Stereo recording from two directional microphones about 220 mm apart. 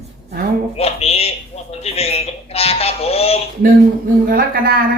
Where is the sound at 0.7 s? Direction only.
30° left (ahead or behind).